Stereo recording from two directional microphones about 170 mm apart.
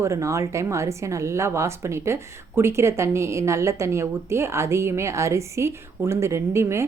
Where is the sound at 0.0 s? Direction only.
15° right (ahead or behind).